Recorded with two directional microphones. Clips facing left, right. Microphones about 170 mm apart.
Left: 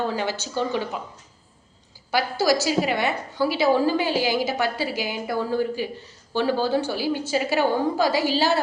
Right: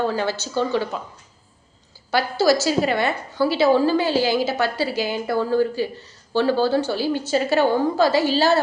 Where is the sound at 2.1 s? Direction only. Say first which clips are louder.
Right 3 dB; 15° left (ahead or behind).